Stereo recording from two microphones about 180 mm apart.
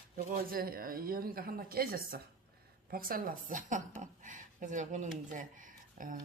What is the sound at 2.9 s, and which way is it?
A woman's voice, 55° right (ahead or behind).